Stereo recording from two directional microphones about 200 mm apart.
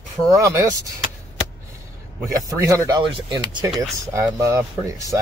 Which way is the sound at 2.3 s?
15° right (ahead or behind).